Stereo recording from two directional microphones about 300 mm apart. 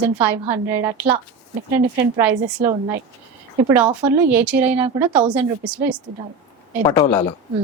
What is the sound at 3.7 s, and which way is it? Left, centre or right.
A woman's voice, centre.